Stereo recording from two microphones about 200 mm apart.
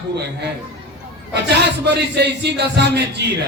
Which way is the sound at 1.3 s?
55° right (ahead or behind).